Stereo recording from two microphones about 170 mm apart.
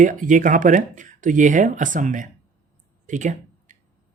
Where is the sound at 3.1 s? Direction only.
45° right (ahead or behind).